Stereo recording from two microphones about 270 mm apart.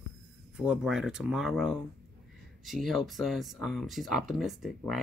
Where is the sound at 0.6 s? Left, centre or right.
Centre.